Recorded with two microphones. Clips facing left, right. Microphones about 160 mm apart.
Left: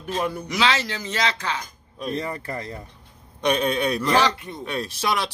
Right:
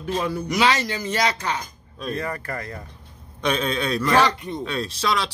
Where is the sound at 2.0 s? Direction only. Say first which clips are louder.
Even; 20° left (ahead or behind).